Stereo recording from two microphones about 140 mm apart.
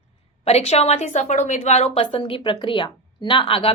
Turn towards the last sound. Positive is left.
turn(degrees=40)  # may be behind; listen again after turning